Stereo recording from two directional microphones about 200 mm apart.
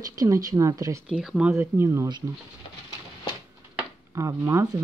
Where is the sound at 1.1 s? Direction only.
5° right (ahead or behind).